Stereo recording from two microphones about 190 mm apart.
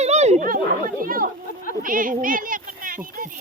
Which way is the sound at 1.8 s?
45° right (ahead or behind).